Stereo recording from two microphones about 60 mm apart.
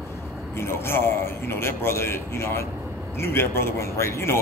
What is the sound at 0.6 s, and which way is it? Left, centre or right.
A man's voice, left.